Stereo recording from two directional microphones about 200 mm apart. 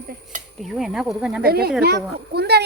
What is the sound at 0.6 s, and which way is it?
Speech, centre (ahead or behind).